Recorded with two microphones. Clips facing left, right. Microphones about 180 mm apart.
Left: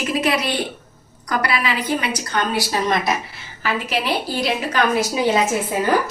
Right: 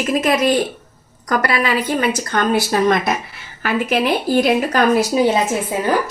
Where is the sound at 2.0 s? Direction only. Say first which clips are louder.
Right 5 dB; 45° right (ahead or behind).